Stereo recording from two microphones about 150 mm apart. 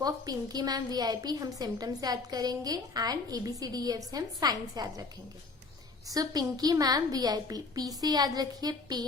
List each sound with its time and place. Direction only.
0.0 s a woman's voice: 25° right (ahead or behind)
6.1 s a woman's voice: 25° right (ahead or behind)